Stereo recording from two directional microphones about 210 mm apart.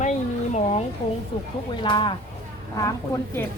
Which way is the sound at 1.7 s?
20° left (ahead or behind).